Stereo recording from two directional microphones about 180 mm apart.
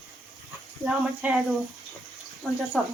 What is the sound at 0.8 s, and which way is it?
Speech, 5° right (ahead or behind).